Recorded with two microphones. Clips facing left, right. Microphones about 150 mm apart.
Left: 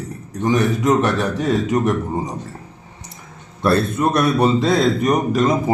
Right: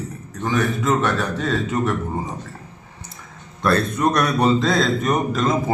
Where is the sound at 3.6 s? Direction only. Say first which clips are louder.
Left 2 dB; 5° left (ahead or behind).